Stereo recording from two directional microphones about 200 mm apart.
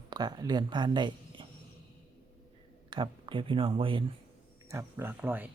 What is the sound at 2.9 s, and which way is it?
Speech, 25° right (ahead or behind).